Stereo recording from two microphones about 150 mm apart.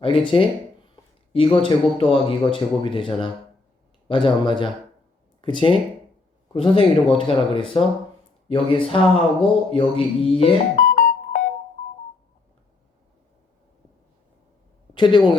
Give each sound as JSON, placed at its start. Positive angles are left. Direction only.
{"t": 0.0, "sound": "speech", "side_deg": 35}
{"t": 10.8, "sound": "music", "side_deg": 65}
{"t": 14.9, "sound": "speech", "side_deg": 30}